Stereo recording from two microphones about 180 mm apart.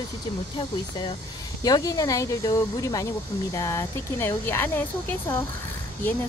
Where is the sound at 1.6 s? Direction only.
20° left (ahead or behind).